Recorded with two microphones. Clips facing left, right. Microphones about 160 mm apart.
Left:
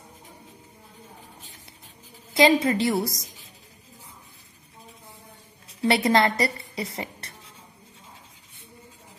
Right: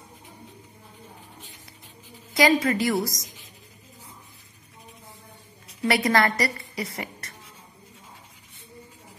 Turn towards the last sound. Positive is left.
turn(degrees=25)  # may be behind; listen again after turning